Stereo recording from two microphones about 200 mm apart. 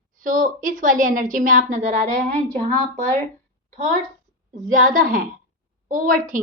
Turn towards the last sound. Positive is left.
turn(degrees=-40)  # may be behind; listen again after turning